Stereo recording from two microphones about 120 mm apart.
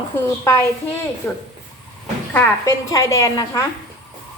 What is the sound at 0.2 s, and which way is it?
A woman's voice, 20° left (ahead or behind).